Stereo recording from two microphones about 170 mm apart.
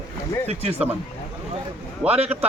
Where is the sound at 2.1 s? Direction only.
35° right (ahead or behind).